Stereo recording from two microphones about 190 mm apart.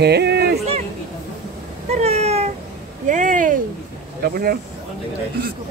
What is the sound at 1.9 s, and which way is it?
Speech, 35° right (ahead or behind).